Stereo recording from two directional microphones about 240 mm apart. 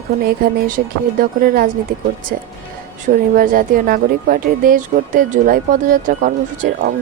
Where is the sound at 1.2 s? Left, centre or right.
Right.